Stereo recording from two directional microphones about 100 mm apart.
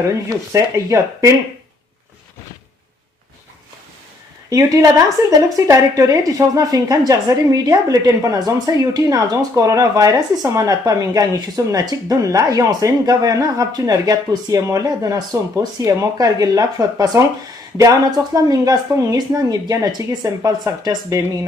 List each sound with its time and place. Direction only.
0.3 s a woman's voice: 30° right (ahead or behind)
4.5 s a woman's voice: 35° right (ahead or behind)